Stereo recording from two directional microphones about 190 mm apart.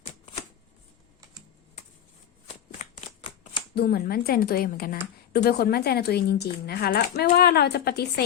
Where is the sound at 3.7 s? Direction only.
55° left (ahead or behind).